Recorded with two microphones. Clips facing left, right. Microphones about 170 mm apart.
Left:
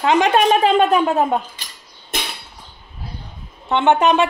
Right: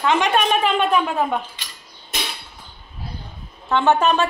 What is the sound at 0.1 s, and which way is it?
A woman's voice, 35° left (ahead or behind).